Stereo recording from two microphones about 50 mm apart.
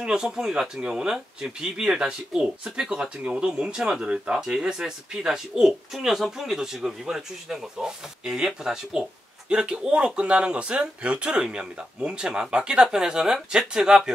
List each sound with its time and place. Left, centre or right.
0.0 s speech: centre